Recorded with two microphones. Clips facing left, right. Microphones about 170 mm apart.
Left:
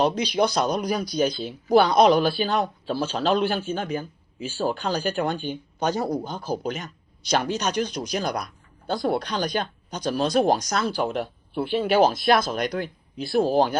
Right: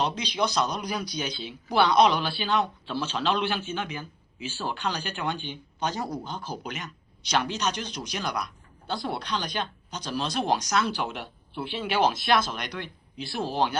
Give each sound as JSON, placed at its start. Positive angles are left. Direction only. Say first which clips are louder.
{"t": 0.0, "sound": "speech", "louder": "left 6 dB", "side_deg": 55}